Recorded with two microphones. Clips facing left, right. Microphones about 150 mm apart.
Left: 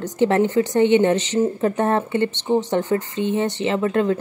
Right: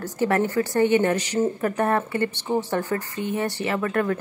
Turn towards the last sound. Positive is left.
turn(degrees=20)  # may be behind; listen again after turning